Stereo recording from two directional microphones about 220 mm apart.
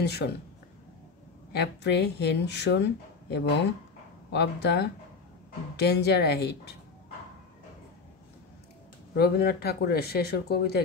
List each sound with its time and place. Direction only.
0.0 s speech: 50° left (ahead or behind)
1.5 s speech: 50° left (ahead or behind)
9.1 s speech: 45° left (ahead or behind)